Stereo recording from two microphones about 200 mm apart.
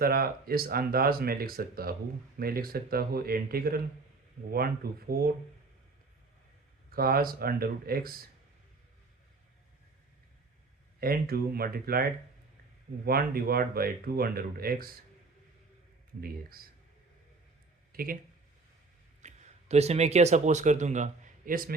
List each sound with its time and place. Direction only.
0.0 s speech: 50° right (ahead or behind)
6.9 s speech: 50° right (ahead or behind)
11.0 s speech: 50° right (ahead or behind)
13.1 s speech: 50° right (ahead or behind)
16.2 s speech: 50° right (ahead or behind)
17.9 s speech: 45° right (ahead or behind)
19.2 s speech: 35° right (ahead or behind)